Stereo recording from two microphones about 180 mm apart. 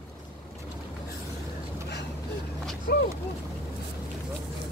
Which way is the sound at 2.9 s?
65° left (ahead or behind).